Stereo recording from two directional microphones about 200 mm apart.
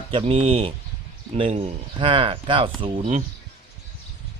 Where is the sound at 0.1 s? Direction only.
25° right (ahead or behind).